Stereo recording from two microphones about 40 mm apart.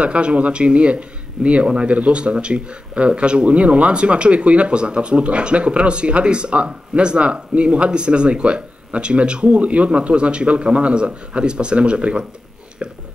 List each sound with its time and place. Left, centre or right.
0.0 s speech: right